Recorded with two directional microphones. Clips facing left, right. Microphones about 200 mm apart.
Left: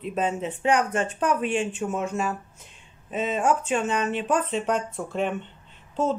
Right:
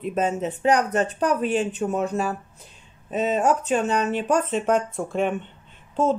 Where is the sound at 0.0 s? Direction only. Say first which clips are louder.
Right 3 dB; 45° right (ahead or behind).